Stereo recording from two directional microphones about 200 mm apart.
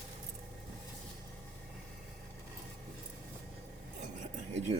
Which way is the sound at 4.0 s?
35° right (ahead or behind).